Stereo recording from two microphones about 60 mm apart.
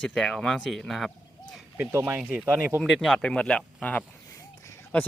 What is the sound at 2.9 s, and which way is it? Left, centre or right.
Speech, centre.